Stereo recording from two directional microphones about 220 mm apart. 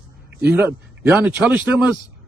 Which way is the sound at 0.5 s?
10° right (ahead or behind).